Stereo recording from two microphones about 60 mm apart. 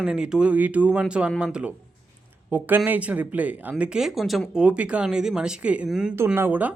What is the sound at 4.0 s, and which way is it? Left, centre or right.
Speech, centre.